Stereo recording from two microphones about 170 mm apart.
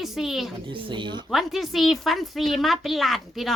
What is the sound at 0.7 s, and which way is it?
Speech, 30° right (ahead or behind).